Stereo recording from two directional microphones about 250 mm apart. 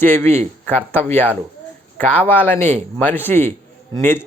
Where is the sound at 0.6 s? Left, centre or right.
Centre.